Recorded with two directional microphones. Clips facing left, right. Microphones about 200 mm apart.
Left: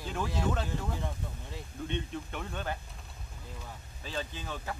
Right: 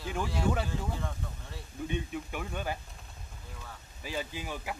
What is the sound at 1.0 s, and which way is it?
Speech, 15° left (ahead or behind).